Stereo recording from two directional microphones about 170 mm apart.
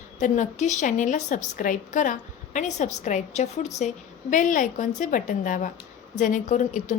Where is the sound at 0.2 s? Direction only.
45° left (ahead or behind).